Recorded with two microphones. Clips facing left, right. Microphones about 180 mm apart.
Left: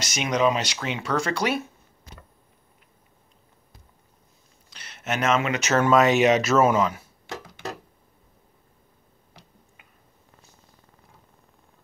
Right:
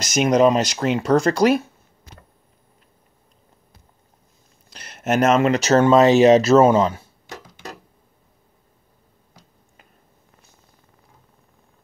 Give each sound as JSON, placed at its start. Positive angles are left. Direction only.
{"t": 0.0, "sound": "speech", "side_deg": -45}
{"t": 4.7, "sound": "speech", "side_deg": -45}